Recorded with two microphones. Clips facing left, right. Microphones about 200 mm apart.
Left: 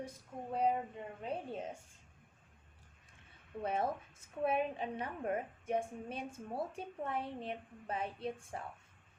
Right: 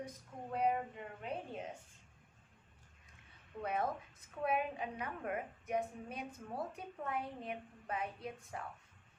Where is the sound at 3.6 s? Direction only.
30° left (ahead or behind).